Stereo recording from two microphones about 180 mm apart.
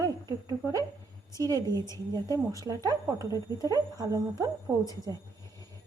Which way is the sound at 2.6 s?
20° right (ahead or behind).